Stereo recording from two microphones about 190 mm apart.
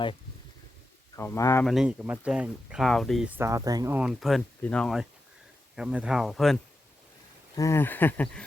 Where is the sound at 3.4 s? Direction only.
15° right (ahead or behind).